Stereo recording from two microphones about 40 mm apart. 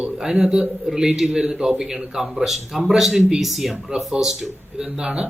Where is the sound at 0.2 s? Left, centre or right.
Centre.